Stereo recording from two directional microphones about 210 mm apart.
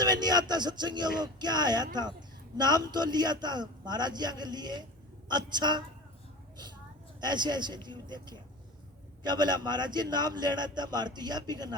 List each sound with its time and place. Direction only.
0.0 s a man's voice: 20° right (ahead or behind)
7.2 s a man's voice: 20° right (ahead or behind)